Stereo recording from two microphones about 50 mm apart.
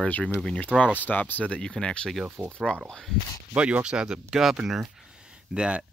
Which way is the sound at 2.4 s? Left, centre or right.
Centre.